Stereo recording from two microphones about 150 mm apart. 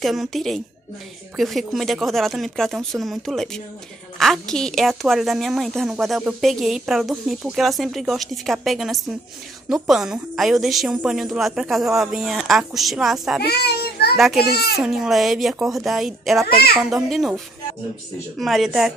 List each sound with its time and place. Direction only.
0.0 s a woman's voice: centre (ahead or behind)
13.4 s a child's voice: 90° left
14.1 s a woman's voice: centre (ahead or behind)
14.4 s a child's voice: 90° left
14.8 s a woman's voice: 5° right (ahead or behind)
18.4 s a woman's voice: centre (ahead or behind)